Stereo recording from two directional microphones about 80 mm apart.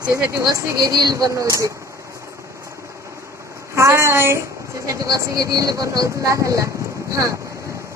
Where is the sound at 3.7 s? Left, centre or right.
Right.